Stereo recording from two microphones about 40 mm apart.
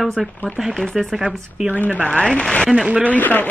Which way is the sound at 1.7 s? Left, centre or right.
Left.